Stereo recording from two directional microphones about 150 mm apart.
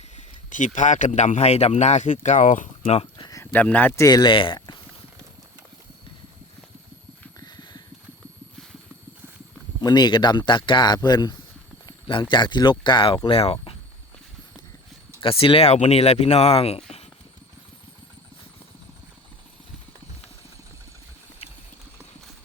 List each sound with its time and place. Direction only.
0.2 s speech: 55° left (ahead or behind)
2.8 s speech: 40° left (ahead or behind)
3.2 s a sound: 20° left (ahead or behind)
3.5 s speech: 10° left (ahead or behind); by 4.8 s 30° left (ahead or behind)
7.3 s a sound: 30° left (ahead or behind)
9.8 s speech: 30° left (ahead or behind)
15.2 s speech: 35° left (ahead or behind)